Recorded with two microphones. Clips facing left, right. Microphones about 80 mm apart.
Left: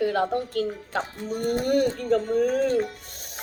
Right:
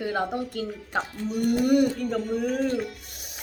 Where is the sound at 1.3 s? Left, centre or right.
Left.